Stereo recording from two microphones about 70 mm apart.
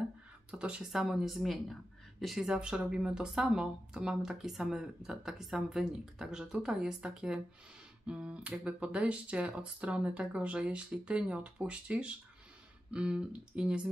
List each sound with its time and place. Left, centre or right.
0.5 s speech: centre
2.4 s speech: centre